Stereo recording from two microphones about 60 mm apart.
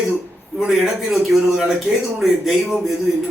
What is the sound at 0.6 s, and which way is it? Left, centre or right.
A man's voice, centre.